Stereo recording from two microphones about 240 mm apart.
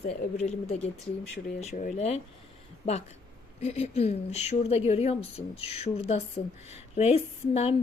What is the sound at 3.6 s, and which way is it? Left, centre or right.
A woman's voice, left.